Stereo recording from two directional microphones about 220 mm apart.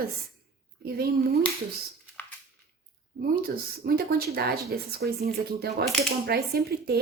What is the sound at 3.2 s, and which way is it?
Speech, 45° right (ahead or behind).